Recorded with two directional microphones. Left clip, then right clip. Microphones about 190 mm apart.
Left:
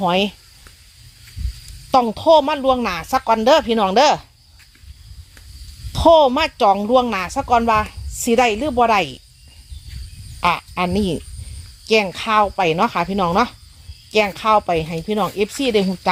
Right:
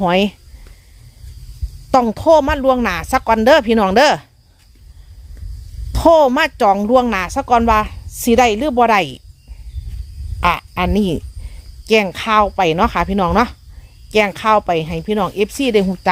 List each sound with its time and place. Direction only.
0.0 s a woman's voice: 25° right (ahead or behind)
1.9 s a woman's voice: 20° right (ahead or behind)
5.9 s a woman's voice: 20° right (ahead or behind)
10.4 s speech: 10° right (ahead or behind)